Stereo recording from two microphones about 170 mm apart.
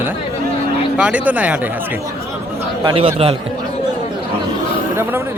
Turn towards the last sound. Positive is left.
turn(degrees=-15)  # may be behind; listen again after turning